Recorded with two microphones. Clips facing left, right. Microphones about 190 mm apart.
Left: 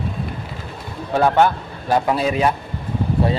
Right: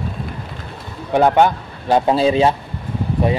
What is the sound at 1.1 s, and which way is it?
Speech, 15° right (ahead or behind).